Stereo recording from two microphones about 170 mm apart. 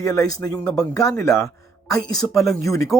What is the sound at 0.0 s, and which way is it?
Speech, 20° left (ahead or behind).